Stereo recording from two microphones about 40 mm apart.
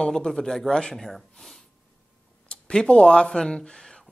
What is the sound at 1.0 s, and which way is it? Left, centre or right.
Speech, centre.